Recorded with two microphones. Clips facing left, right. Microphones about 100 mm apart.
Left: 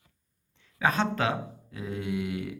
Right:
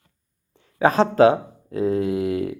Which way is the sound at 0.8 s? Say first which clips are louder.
Right 11 dB; 35° right (ahead or behind).